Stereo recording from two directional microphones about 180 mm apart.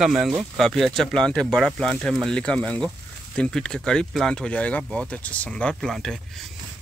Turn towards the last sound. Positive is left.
turn(degrees=0)  # may be behind; listen again after turning